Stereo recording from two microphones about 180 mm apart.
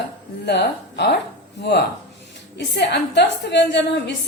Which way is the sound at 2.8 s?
75° left (ahead or behind).